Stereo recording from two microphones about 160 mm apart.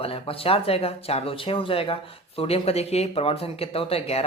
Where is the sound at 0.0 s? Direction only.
35° left (ahead or behind).